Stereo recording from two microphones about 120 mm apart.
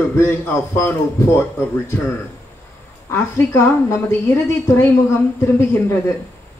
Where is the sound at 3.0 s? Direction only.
20° left (ahead or behind).